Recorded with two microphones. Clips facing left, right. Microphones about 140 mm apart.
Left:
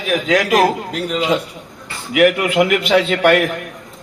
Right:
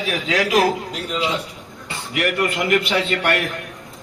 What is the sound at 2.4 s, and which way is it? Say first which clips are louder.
A man's voice: left 4 dB; 65° left (ahead or behind).